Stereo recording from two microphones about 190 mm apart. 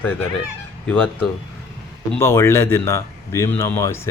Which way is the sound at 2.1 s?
15° left (ahead or behind).